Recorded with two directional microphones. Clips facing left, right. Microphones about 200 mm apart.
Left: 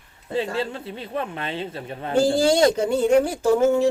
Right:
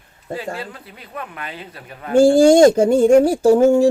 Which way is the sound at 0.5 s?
25° left (ahead or behind).